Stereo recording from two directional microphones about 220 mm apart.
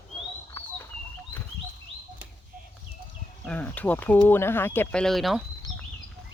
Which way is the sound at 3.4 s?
5° left (ahead or behind).